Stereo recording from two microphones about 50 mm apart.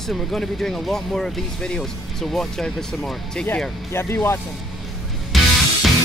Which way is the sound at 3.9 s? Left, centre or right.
Left.